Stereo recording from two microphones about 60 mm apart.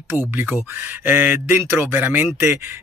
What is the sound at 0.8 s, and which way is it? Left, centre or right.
Speech, right.